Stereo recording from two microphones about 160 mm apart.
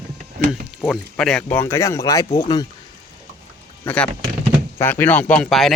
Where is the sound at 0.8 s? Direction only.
5° left (ahead or behind); by 2.4 s 20° left (ahead or behind).